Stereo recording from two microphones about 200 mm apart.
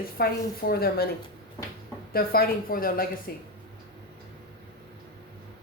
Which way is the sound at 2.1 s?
50° left (ahead or behind).